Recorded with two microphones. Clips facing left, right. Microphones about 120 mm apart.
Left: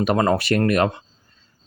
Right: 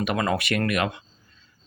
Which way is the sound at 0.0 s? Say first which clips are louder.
Left 6 dB; 40° left (ahead or behind).